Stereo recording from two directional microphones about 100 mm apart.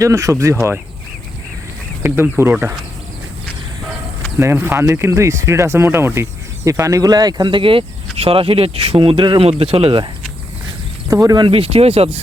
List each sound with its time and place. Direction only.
0.0 s speech: 30° right (ahead or behind)
2.0 s speech: 20° right (ahead or behind)
4.4 s speech: 25° right (ahead or behind); by 9.5 s 55° right (ahead or behind)
9.5 s speech: 75° right (ahead or behind)
11.1 s speech: 35° right (ahead or behind)
11.3 s speech: 60° right (ahead or behind); by 12.1 s 90° right